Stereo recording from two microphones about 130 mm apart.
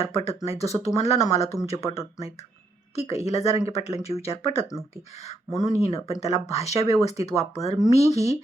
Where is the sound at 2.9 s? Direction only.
55° left (ahead or behind).